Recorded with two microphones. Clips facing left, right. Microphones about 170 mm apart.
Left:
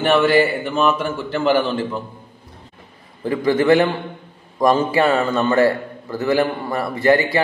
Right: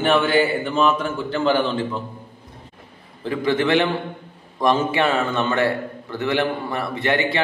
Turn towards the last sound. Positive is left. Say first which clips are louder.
# left 5 dB
turn(degrees=40)  # may be behind; listen again after turning